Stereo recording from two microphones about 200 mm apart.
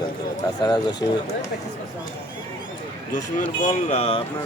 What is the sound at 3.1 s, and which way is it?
Speech, 40° left (ahead or behind).